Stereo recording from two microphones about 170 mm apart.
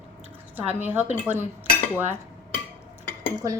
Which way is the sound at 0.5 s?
10° right (ahead or behind).